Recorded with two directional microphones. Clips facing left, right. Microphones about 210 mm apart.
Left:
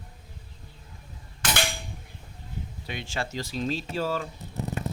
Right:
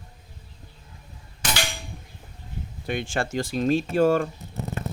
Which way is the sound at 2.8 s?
50° right (ahead or behind).